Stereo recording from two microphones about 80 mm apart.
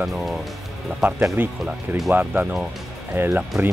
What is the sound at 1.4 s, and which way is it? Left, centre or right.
Speech, right.